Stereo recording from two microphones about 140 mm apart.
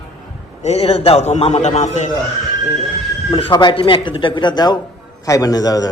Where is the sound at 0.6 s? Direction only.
50° left (ahead or behind).